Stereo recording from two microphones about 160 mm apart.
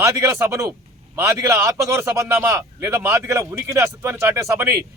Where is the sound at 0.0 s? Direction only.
20° right (ahead or behind).